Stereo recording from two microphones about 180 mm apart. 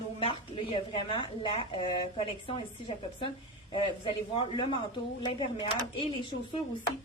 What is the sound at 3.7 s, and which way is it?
Speech, 30° left (ahead or behind).